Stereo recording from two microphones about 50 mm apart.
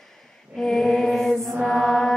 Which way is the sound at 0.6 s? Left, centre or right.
Centre.